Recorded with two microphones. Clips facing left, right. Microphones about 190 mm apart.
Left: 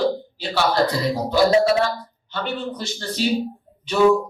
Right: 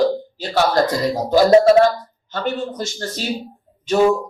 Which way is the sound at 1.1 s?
45° right (ahead or behind).